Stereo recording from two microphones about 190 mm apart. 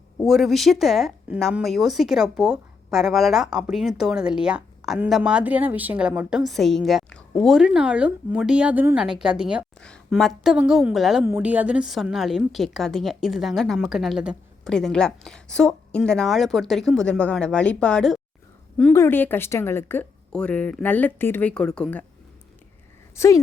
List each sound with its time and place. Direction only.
0.3 s a woman's voice: centre (ahead or behind)
23.1 s speech: 15° left (ahead or behind)